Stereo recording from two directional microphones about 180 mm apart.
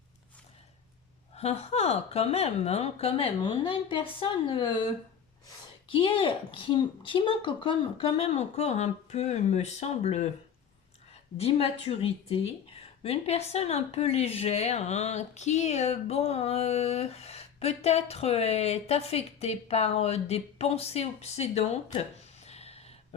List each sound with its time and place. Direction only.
1.4 s speech: 35° left (ahead or behind)
11.3 s speech: 35° left (ahead or behind)
22.4 s a sound: 35° left (ahead or behind)